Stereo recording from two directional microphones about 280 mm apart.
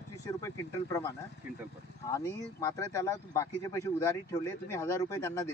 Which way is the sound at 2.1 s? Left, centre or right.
Centre.